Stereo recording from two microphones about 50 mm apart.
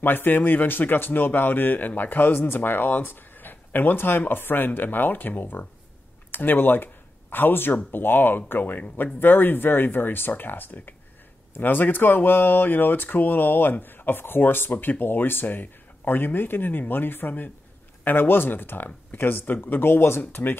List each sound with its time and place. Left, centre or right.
0.0 s speech: left